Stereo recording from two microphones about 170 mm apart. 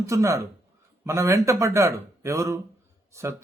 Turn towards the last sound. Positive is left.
turn(degrees=-15)  # may be behind; listen again after turning